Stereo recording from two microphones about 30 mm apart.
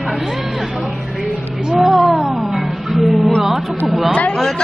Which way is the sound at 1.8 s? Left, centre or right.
Centre.